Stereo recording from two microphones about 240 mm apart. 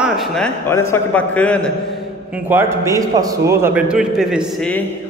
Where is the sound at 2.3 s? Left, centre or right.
Centre.